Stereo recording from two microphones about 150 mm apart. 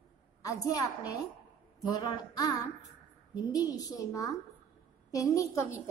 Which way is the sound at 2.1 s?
25° left (ahead or behind).